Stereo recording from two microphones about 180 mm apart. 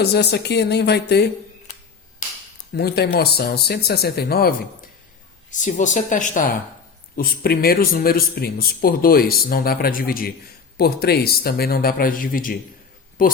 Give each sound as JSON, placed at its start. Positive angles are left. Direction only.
{"t": 0.0, "sound": "speech", "side_deg": 65}
{"t": 2.2, "sound": "a sound", "side_deg": 45}
{"t": 2.7, "sound": "speech", "side_deg": 65}
{"t": 5.5, "sound": "speech", "side_deg": 45}